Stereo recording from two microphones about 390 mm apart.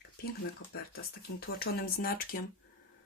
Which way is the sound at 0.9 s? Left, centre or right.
Left.